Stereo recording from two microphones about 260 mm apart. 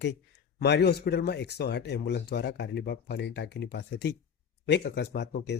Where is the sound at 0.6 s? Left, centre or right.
Left.